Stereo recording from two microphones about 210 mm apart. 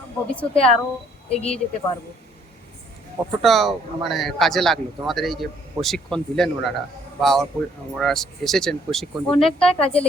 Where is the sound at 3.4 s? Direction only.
Centre (ahead or behind).